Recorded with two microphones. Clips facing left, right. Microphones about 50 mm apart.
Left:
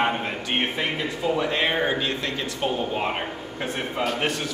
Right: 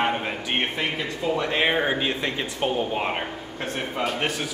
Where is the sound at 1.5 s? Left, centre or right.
Centre.